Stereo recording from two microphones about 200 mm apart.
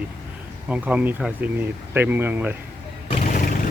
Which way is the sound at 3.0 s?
35° left (ahead or behind).